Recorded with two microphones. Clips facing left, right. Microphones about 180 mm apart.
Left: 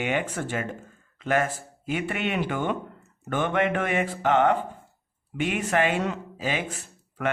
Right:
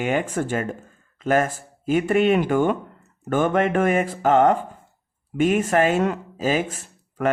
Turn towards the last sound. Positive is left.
turn(degrees=-45)  # may be behind; listen again after turning